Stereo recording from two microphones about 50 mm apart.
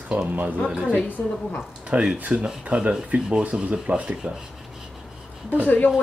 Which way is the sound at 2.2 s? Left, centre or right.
Right.